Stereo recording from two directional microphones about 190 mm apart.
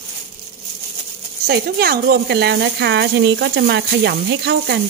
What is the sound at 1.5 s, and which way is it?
Speech, 55° right (ahead or behind).